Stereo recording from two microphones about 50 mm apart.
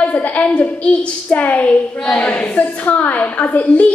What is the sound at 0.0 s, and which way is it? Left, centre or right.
A woman's voice, left.